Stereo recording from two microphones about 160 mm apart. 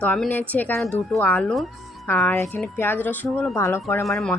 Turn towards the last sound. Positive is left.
turn(degrees=15)  # may be behind; listen again after turning